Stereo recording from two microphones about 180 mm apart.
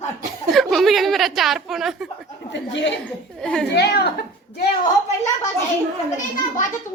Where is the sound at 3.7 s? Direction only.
65° left (ahead or behind).